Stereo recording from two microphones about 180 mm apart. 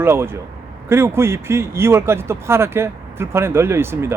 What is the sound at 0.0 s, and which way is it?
Speech, 15° right (ahead or behind).